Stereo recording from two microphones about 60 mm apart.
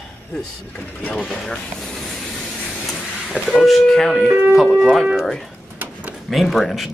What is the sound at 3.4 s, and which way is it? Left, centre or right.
Speech, centre.